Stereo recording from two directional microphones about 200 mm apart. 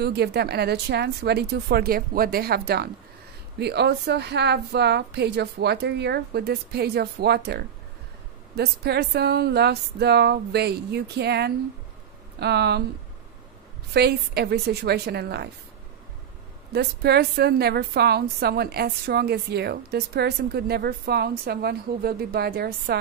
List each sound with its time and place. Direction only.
0.0 s a woman's voice: 55° right (ahead or behind)
13.9 s a woman's voice: 55° right (ahead or behind)
16.7 s a woman's voice: 55° right (ahead or behind)